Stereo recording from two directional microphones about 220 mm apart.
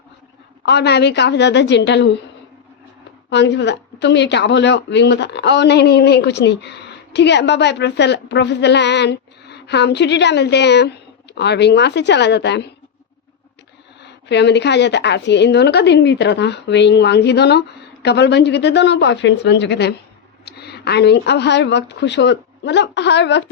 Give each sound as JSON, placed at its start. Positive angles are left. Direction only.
{"t": 0.6, "sound": "a woman's voice", "side_deg": 50}
{"t": 3.2, "sound": "a woman's voice", "side_deg": 50}
{"t": 14.0, "sound": "a woman's voice", "side_deg": 50}